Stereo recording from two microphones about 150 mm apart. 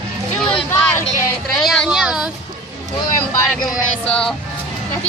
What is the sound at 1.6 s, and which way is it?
Speech, centre (ahead or behind).